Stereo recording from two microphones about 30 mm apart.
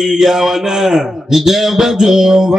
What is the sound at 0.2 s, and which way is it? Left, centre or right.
A man's voice, centre.